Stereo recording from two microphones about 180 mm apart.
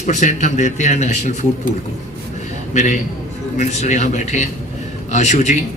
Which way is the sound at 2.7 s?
45° left (ahead or behind).